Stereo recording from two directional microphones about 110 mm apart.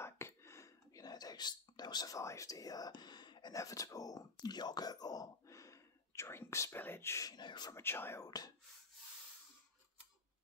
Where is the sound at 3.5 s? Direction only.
30° left (ahead or behind).